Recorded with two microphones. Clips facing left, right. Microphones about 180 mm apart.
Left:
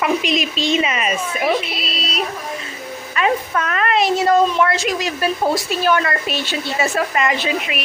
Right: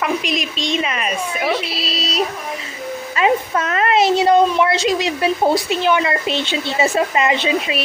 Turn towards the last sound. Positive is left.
turn(degrees=-25)  # may be behind; listen again after turning